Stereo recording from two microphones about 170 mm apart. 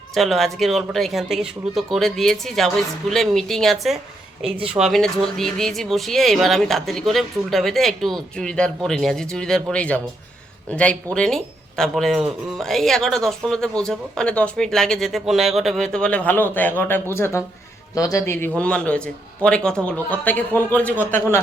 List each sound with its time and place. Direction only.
0.1 s speech: centre (ahead or behind)
4.4 s speech: 35° right (ahead or behind)
4.7 s a man's voice: centre (ahead or behind)